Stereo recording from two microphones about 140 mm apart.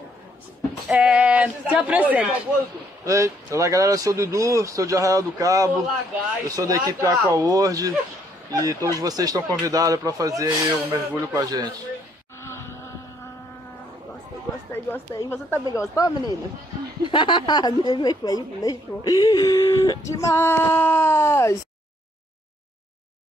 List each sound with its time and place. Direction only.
0.8 s speech: 5° right (ahead or behind)
3.1 s speech: 20° right (ahead or behind)
12.4 s insect: 20° left (ahead or behind)
14.7 s a woman's voice: 20° left (ahead or behind)